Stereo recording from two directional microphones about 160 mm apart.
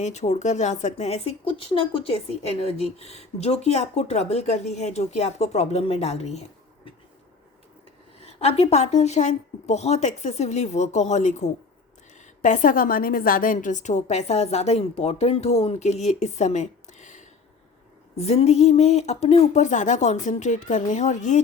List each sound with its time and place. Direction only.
0.0 s speech: 45° left (ahead or behind)
8.2 s speech: 40° left (ahead or behind)